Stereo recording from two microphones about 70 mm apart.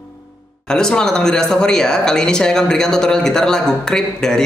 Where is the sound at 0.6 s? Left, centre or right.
Centre.